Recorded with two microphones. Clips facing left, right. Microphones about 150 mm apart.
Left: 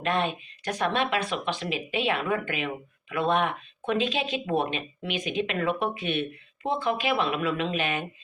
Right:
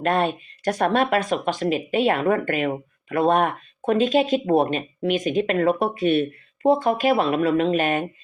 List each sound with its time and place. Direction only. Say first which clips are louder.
0.0 s speech: right 6 dB; 45° right (ahead or behind)